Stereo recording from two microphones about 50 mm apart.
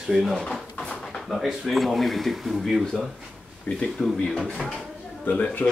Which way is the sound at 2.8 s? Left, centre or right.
Centre.